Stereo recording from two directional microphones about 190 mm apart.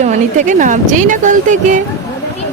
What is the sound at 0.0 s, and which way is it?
Speech, 40° right (ahead or behind).